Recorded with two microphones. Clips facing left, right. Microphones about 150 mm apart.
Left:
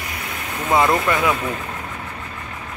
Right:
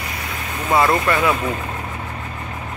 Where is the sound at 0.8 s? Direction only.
10° left (ahead or behind).